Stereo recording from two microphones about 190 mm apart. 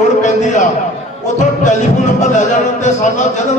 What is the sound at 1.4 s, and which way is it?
A man's voice, 40° left (ahead or behind).